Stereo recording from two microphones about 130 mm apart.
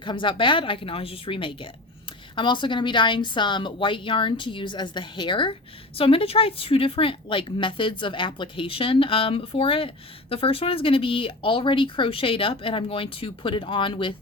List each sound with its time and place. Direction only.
0.0 s a woman's voice: 40° left (ahead or behind)